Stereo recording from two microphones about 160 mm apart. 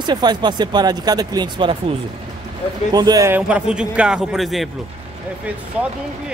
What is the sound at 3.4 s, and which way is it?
Speech, 10° right (ahead or behind).